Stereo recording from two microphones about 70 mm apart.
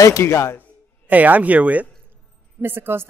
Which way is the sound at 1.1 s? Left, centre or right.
Right.